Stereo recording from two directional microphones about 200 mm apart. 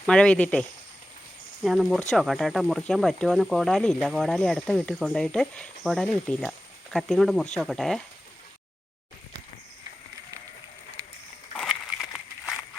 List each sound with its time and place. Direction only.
0.0 s speech: 5° left (ahead or behind)
1.6 s speech: centre (ahead or behind)
11.5 s a sound: centre (ahead or behind)